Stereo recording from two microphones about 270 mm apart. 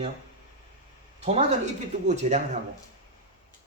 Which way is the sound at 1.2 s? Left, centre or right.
Right.